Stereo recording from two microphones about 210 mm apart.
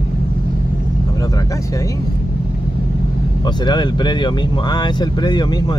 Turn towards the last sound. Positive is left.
turn(degrees=20)  # may be behind; listen again after turning